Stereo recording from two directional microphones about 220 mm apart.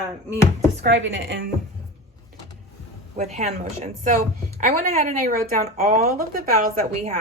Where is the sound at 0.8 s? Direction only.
55° right (ahead or behind).